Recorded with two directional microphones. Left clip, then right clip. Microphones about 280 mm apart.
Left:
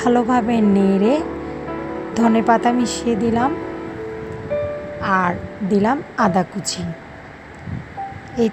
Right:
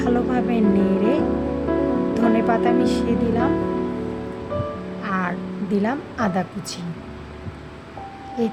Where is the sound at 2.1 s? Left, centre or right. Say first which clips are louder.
Left 6 dB; centre.